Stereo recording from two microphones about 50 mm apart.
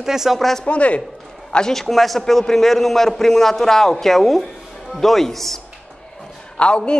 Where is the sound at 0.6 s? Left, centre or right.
Left.